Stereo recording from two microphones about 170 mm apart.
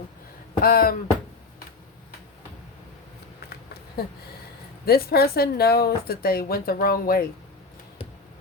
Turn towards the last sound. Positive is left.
turn(degrees=60)  # may be behind; listen again after turning